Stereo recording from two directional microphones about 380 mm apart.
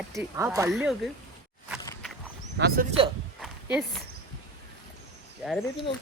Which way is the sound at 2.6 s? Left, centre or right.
Right.